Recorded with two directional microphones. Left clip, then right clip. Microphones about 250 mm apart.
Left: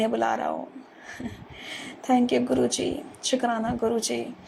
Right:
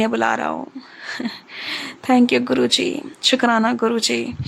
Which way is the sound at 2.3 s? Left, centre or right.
Right.